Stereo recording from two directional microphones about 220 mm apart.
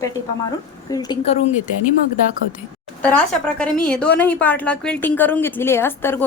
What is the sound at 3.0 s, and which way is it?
A woman's voice, 5° left (ahead or behind).